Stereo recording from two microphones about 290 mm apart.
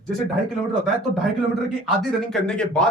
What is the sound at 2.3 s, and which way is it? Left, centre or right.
Speech, centre.